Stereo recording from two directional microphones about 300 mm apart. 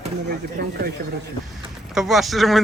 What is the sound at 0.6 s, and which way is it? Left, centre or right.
Speech, right.